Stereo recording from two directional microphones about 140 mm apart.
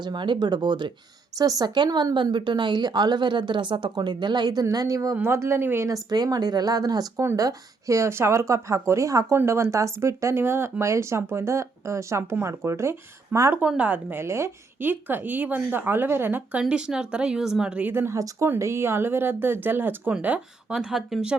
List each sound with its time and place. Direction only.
0.0 s a woman's voice: 35° right (ahead or behind); by 21.3 s 5° right (ahead or behind)